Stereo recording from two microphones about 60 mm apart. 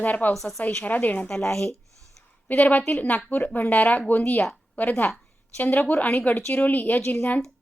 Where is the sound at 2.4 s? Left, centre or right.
Left.